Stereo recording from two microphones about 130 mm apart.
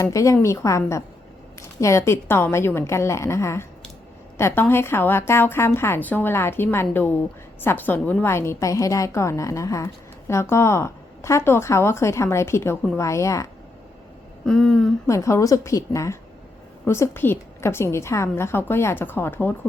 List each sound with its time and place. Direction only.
0.0 s a woman's voice: 25° left (ahead or behind)
14.4 s a sound: 5° left (ahead or behind)
15.0 s a woman's voice: 25° left (ahead or behind)